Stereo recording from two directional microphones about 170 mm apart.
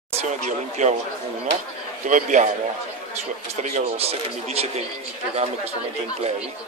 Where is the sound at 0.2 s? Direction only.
45° right (ahead or behind).